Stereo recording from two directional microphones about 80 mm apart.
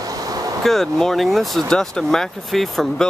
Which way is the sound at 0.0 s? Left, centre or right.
Right.